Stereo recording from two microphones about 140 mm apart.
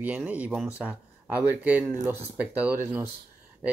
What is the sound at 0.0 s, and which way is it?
Speech, 10° right (ahead or behind).